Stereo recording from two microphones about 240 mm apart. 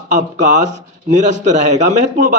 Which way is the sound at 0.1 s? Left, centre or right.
Right.